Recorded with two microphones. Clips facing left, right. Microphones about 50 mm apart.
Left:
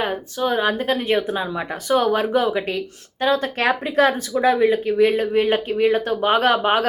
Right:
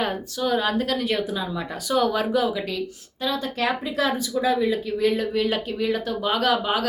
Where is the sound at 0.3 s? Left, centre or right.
Left.